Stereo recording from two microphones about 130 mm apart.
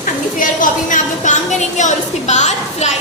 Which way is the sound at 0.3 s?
90° left.